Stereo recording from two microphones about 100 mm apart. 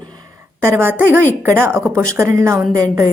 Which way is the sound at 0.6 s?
25° right (ahead or behind).